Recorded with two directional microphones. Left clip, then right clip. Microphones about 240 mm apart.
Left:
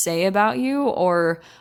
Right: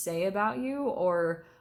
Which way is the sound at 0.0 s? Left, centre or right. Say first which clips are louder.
Left 10 dB; left.